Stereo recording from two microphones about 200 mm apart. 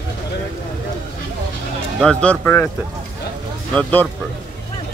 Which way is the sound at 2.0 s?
5° left (ahead or behind).